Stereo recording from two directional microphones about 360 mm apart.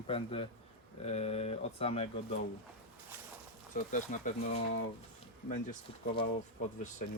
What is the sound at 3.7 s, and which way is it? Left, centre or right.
Speech, left.